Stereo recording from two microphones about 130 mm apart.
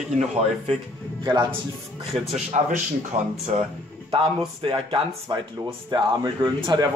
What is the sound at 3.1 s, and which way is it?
Speech, 55° right (ahead or behind).